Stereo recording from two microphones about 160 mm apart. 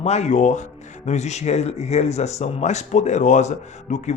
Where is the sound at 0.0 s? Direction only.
45° left (ahead or behind).